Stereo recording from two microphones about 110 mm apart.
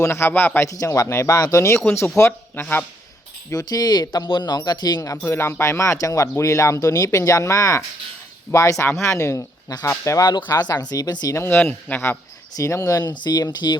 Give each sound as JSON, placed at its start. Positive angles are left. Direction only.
{"t": 0.0, "sound": "speech", "side_deg": 25}
{"t": 0.7, "sound": "speech", "side_deg": 30}
{"t": 3.5, "sound": "speech", "side_deg": 35}
{"t": 5.1, "sound": "speech", "side_deg": 25}
{"t": 11.3, "sound": "speech", "side_deg": 20}
{"t": 12.5, "sound": "speech", "side_deg": 30}